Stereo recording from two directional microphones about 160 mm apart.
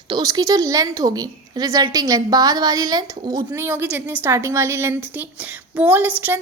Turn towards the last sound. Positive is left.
turn(degrees=-10)  # may be behind; listen again after turning